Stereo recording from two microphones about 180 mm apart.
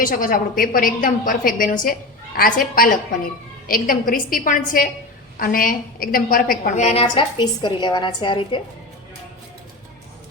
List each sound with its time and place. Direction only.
0.0 s a woman's voice: 50° left (ahead or behind); by 8.6 s 30° left (ahead or behind)